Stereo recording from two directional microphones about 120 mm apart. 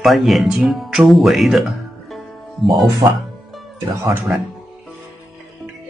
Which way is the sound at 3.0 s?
45° right (ahead or behind).